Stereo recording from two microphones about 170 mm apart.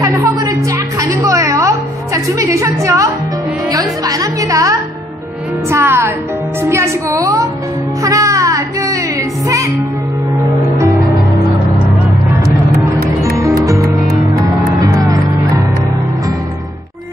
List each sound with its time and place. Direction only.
0.0 s music: 20° right (ahead or behind)
6.6 s a sound: 15° right (ahead or behind)
8.0 s music: 20° right (ahead or behind)
10.4 s music: 20° right (ahead or behind)
13.2 s music: 20° right (ahead or behind)